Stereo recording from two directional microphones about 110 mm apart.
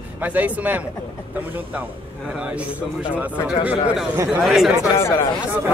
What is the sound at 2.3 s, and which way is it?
A man's voice, 10° right (ahead or behind).